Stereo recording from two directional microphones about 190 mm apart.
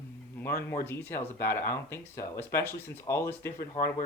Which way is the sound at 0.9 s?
10° left (ahead or behind).